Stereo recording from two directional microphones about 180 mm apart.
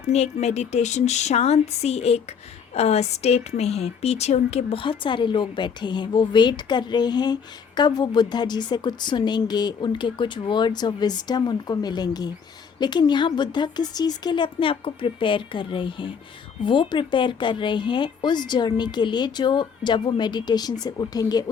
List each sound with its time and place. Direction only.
0.0 s a woman's voice: 40° left (ahead or behind); by 21.5 s 20° left (ahead or behind)